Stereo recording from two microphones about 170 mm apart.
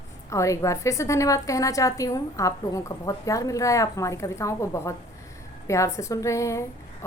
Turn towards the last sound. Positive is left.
turn(degrees=15)  # may be behind; listen again after turning